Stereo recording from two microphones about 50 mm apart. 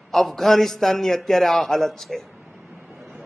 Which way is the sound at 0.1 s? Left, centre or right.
Centre.